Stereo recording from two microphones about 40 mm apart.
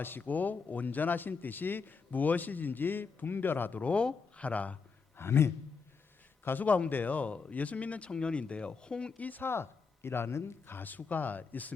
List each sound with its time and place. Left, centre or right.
0.0 s speech: left
2.0 s speech: left
3.8 s speech: left
5.1 s speech: left
6.6 s speech: left
9.1 s speech: left
9.4 s speech: left
10.8 s speech: left